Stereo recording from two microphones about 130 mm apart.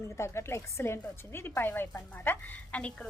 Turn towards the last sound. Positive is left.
turn(degrees=10)  # may be behind; listen again after turning